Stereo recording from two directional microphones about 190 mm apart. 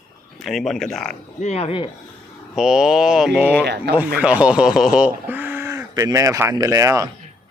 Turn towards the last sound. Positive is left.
turn(degrees=-15)  # may be behind; listen again after turning